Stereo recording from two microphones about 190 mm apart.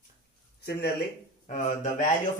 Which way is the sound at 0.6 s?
60° left (ahead or behind).